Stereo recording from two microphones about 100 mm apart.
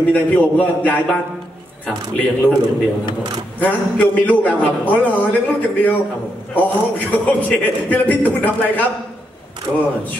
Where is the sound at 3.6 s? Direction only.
15° left (ahead or behind).